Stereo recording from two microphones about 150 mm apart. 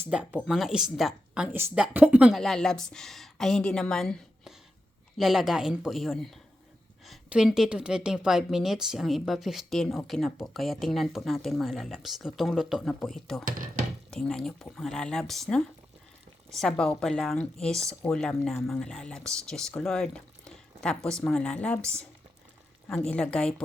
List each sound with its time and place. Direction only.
0.1 s speech: 5° right (ahead or behind)
13.4 s a sound: 65° right (ahead or behind)
14.1 s speech: 5° left (ahead or behind)
21.8 s speech: 20° right (ahead or behind)
22.9 s a woman's voice: 10° left (ahead or behind)